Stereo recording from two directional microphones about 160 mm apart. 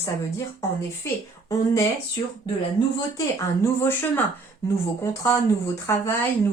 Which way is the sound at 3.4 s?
15° left (ahead or behind).